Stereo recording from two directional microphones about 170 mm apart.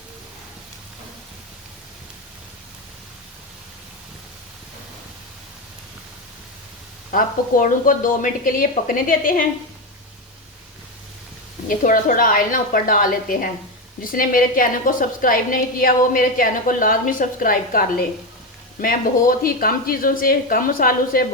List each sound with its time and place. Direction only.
7.1 s a woman's voice: 55° left (ahead or behind)
11.7 s a woman's voice: 50° left (ahead or behind)